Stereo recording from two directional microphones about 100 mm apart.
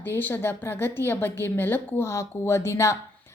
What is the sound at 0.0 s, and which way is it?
A woman's voice, 20° left (ahead or behind).